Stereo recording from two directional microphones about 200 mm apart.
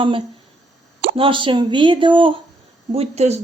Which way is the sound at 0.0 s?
25° right (ahead or behind).